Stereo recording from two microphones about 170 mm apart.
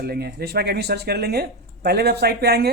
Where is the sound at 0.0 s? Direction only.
70° right (ahead or behind).